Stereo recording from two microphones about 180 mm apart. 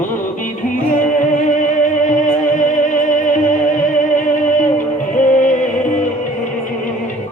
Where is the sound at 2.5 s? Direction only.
45° left (ahead or behind).